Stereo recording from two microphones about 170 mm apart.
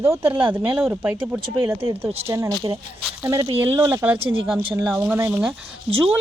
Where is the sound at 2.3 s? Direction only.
15° right (ahead or behind).